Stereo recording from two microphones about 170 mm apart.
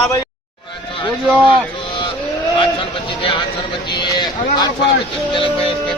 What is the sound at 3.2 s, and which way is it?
Speech, 30° left (ahead or behind).